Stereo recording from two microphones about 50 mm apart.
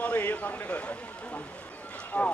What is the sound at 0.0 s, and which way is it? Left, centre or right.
Speech, left.